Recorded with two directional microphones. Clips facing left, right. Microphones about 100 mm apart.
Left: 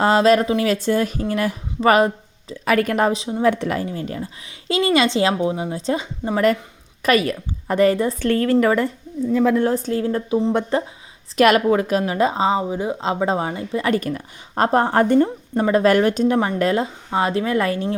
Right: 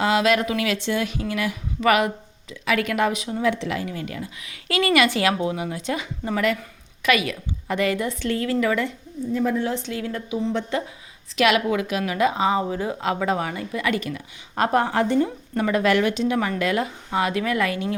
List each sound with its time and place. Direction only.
0.0 s speech: 40° left (ahead or behind)
3.4 s a woman's voice: 50° left (ahead or behind)
3.8 s a woman's voice: 35° left (ahead or behind)
7.0 s a woman's voice: 40° left (ahead or behind)
8.2 s a woman's voice: 50° left (ahead or behind)
8.5 s speech: 40° left (ahead or behind)
15.5 s speech: 35° left (ahead or behind)
16.6 s speech: 30° left (ahead or behind)